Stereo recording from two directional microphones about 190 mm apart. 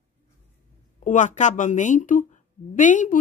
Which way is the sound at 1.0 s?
40° left (ahead or behind).